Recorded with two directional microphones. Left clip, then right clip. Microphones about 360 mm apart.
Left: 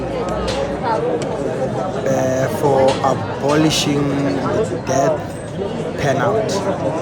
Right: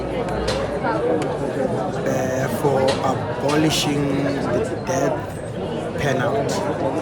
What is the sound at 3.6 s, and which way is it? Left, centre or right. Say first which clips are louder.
A man's voice: left 3 dB; centre.